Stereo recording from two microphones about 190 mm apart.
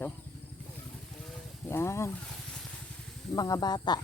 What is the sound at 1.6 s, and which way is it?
Speech, 15° left (ahead or behind).